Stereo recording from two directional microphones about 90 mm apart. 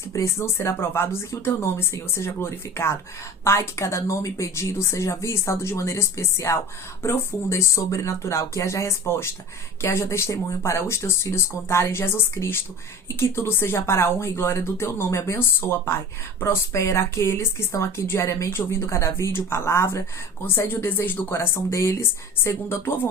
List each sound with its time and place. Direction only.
0.1 s speech: 35° left (ahead or behind)